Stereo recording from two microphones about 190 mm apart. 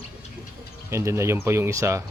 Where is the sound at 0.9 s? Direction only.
15° right (ahead or behind).